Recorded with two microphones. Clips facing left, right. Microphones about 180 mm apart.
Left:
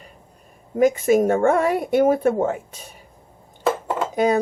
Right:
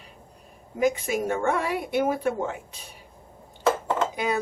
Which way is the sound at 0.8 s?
50° left (ahead or behind).